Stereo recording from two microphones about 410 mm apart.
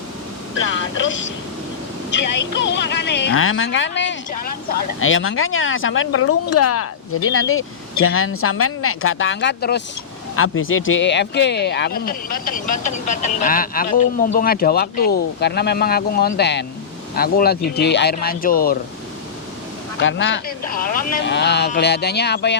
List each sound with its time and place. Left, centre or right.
0.6 s speech: left
20.0 s speech: left